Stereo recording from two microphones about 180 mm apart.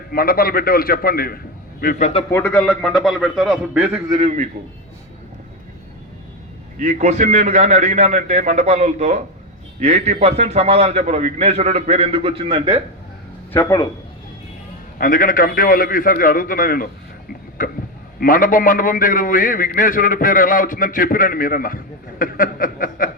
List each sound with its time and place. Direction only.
0.1 s a man's voice: 55° left (ahead or behind)
1.8 s a man's voice: 45° left (ahead or behind)
2.3 s a man's voice: 10° left (ahead or behind); by 4.0 s 10° right (ahead or behind)
4.1 s a man's voice: 40° right (ahead or behind)
6.7 s a man's voice: 40° right (ahead or behind)
13.5 s speech: 15° left (ahead or behind)
14.9 s a man's voice: 50° left (ahead or behind)
18.2 s a man's voice: 50° left (ahead or behind)